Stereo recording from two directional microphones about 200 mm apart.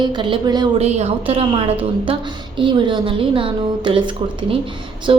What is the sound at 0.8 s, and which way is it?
A woman's voice, 35° right (ahead or behind).